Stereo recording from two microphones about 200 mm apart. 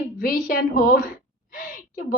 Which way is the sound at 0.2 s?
45° left (ahead or behind).